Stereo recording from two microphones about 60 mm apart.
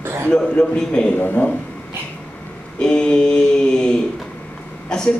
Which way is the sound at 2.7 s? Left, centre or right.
Centre.